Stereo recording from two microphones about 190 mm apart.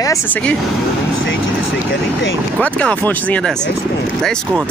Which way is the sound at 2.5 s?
5° left (ahead or behind).